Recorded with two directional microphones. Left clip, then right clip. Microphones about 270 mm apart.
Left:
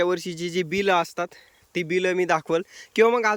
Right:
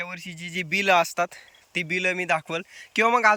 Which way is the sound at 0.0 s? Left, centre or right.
Left.